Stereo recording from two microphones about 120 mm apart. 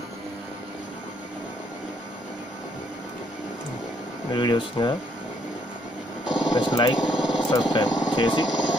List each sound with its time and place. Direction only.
4.3 s speech: 40° left (ahead or behind)
6.2 s vehicle: 5° right (ahead or behind)
6.5 s speech: 35° left (ahead or behind)
7.0 s a sound: 5° right (ahead or behind)
7.3 s vehicle: 40° left (ahead or behind)
7.9 s speech: 5° right (ahead or behind)
8.2 s speech: 40° left (ahead or behind)
8.5 s a sound: 5° right (ahead or behind)